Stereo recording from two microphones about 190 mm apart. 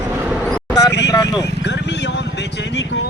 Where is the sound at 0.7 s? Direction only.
20° left (ahead or behind).